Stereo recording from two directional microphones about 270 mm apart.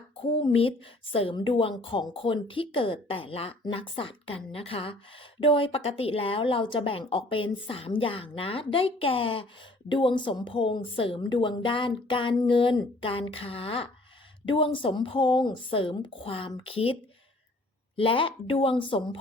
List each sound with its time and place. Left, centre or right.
0.2 s a woman's voice: left